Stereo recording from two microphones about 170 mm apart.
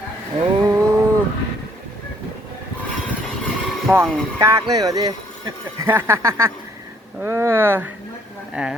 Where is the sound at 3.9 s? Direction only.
15° right (ahead or behind).